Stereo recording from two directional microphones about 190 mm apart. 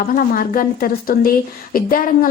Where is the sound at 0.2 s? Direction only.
50° left (ahead or behind).